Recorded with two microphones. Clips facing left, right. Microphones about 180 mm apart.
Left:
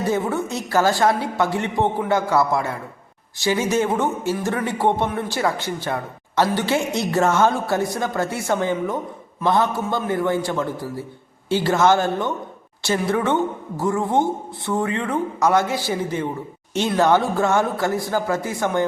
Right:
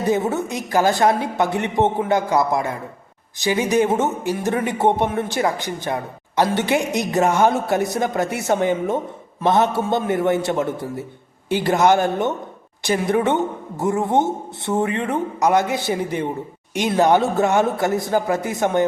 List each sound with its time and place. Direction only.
0.1 s speech: 20° right (ahead or behind)